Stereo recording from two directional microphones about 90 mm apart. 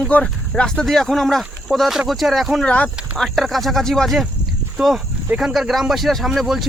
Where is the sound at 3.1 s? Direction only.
Centre (ahead or behind).